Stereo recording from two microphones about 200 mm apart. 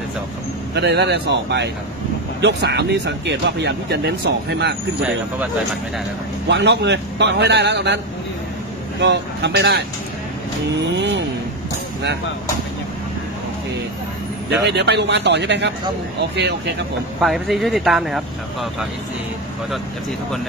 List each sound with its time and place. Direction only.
0.7 s speech: 60° right (ahead or behind)
6.5 s speech: 60° right (ahead or behind)
9.0 s speech: 60° right (ahead or behind)
11.0 s speech: 60° right (ahead or behind)
14.5 s speech: 60° right (ahead or behind)
17.2 s speech: centre (ahead or behind)